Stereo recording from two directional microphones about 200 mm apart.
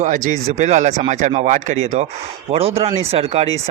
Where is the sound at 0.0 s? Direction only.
40° right (ahead or behind).